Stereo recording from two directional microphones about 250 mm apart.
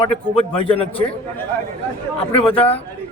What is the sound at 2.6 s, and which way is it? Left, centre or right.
Speech, left.